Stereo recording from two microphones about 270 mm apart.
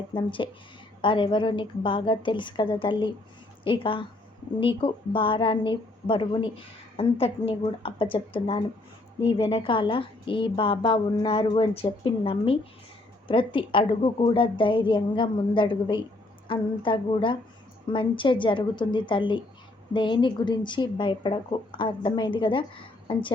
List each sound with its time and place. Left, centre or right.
0.1 s a woman's voice: centre